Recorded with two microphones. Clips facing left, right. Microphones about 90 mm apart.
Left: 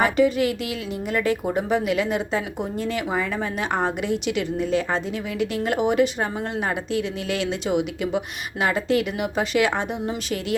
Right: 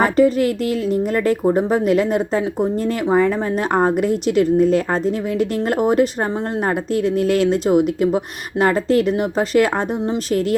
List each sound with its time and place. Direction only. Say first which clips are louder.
0.0 s speech: right 4 dB; 40° right (ahead or behind)